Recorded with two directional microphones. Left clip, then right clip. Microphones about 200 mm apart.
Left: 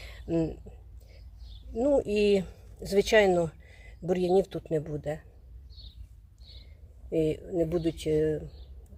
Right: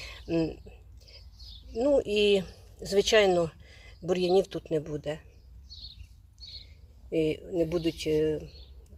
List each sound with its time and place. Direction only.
0.0 s throat clearing: 5° left (ahead or behind)
1.7 s speech: 15° left (ahead or behind)
7.1 s speech: 5° left (ahead or behind)